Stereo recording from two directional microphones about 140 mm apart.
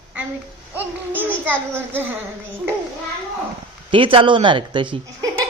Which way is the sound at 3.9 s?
40° right (ahead or behind).